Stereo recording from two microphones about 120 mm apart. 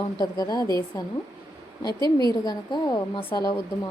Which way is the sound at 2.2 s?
35° left (ahead or behind).